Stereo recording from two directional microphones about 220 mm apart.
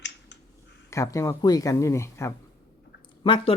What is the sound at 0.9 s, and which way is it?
Speech, 15° left (ahead or behind).